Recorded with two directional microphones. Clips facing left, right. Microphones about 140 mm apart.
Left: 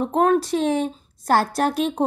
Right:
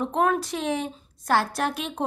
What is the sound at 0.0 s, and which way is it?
A woman's voice, 35° left (ahead or behind).